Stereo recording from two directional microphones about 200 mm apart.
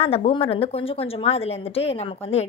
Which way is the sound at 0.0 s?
30° left (ahead or behind).